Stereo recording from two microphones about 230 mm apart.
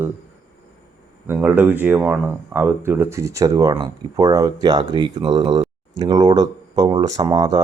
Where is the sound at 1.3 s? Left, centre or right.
Centre.